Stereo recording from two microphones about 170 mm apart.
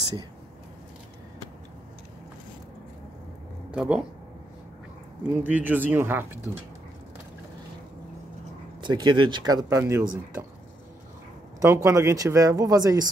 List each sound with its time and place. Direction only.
3.7 s speech: 5° right (ahead or behind)
5.2 s speech: 10° right (ahead or behind)
8.8 s speech: 25° right (ahead or behind)
11.6 s speech: 15° right (ahead or behind)